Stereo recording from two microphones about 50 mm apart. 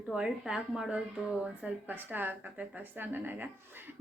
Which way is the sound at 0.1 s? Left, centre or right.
Centre.